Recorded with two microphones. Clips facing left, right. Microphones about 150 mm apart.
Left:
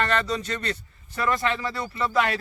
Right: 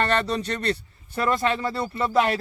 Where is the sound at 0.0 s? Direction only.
35° right (ahead or behind).